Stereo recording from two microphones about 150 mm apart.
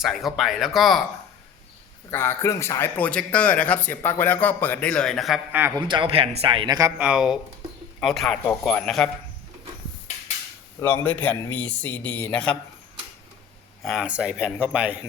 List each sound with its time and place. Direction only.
0.0 s speech: centre (ahead or behind)
2.0 s a man's voice: 15° left (ahead or behind); by 5.5 s centre (ahead or behind)
5.8 s a man's voice: 35° right (ahead or behind)
7.0 s speech: 5° right (ahead or behind)
10.8 s a man's voice: 15° left (ahead or behind)
13.8 s speech: 5° right (ahead or behind)